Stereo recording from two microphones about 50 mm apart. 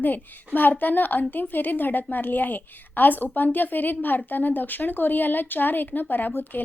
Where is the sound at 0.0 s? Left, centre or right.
Left.